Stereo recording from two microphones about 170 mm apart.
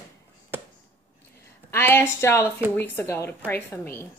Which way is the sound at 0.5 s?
15° right (ahead or behind).